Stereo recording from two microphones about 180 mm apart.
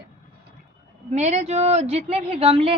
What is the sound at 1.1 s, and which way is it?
A man's voice, 40° right (ahead or behind).